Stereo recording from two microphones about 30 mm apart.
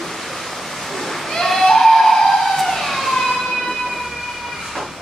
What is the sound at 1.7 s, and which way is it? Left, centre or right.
Emergency vehicle, centre.